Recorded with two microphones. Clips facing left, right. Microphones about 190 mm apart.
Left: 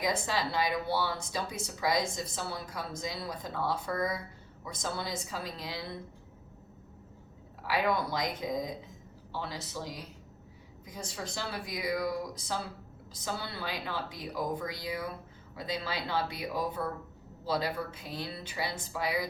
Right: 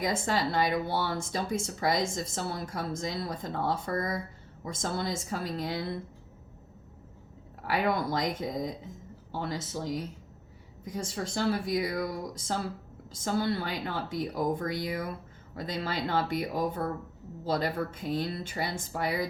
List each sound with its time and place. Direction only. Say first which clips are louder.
0.0 s speech: right 3 dB; 50° right (ahead or behind)
7.6 s speech: right 2 dB; 50° right (ahead or behind)
11.1 s speech: right 9 dB; 50° right (ahead or behind)
13.1 s speech: right 9 dB; 50° right (ahead or behind)